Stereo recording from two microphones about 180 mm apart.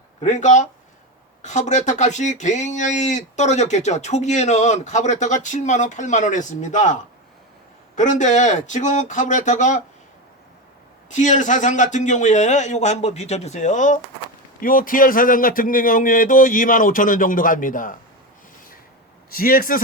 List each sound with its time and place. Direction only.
0.2 s speech: 40° left (ahead or behind)
7.9 s speech: 40° left (ahead or behind)
11.1 s a man's voice: 45° left (ahead or behind)
19.3 s a man's voice: 55° left (ahead or behind)